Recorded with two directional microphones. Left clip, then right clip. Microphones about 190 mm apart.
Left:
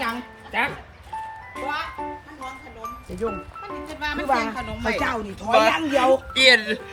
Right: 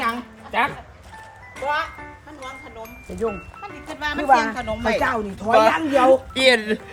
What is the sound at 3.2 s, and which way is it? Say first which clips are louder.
Speech: right 2 dB; 35° right (ahead or behind).